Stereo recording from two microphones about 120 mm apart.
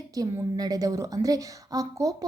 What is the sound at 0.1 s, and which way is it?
A woman's voice, 30° right (ahead or behind).